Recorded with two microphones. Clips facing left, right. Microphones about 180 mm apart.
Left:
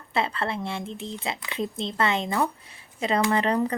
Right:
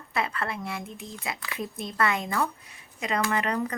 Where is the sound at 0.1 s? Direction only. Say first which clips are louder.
Left 3 dB; 30° left (ahead or behind).